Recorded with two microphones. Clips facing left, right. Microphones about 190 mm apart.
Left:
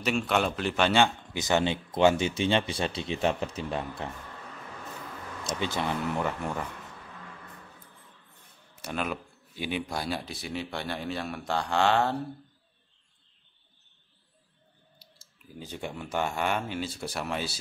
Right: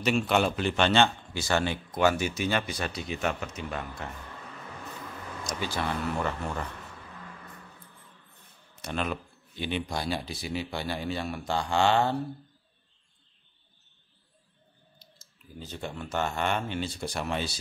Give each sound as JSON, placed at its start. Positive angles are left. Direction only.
{"t": 0.0, "sound": "speech", "side_deg": 0}
{"t": 5.4, "sound": "speech", "side_deg": 25}
{"t": 8.8, "sound": "speech", "side_deg": 5}
{"t": 15.6, "sound": "speech", "side_deg": 15}